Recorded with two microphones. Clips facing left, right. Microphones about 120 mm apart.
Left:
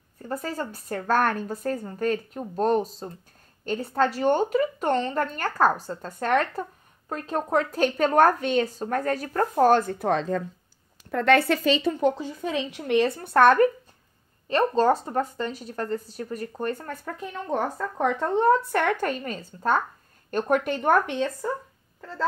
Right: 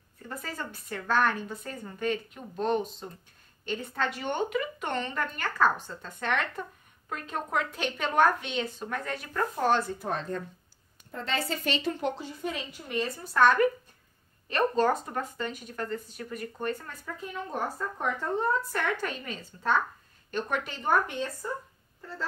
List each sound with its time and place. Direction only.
0.3 s a woman's voice: 40° left (ahead or behind)
11.1 s a woman's voice: 65° left (ahead or behind)
12.5 s a woman's voice: 85° left; by 13.6 s 60° left (ahead or behind)
14.5 s a woman's voice: 30° left (ahead or behind); by 17.1 s 50° left (ahead or behind)
17.2 s speech: 85° left
18.2 s speech: 75° left (ahead or behind)